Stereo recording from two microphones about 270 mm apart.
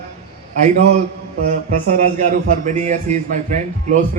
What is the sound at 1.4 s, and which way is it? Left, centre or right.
A man's voice, right.